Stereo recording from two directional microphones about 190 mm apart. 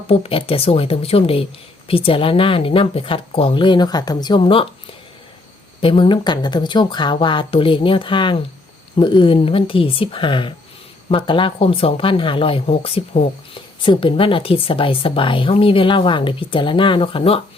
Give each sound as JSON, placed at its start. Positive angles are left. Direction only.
{"t": 0.1, "sound": "speech", "side_deg": 30}